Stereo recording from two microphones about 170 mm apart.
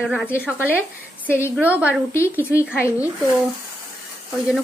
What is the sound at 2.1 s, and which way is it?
Speech, 15° left (ahead or behind).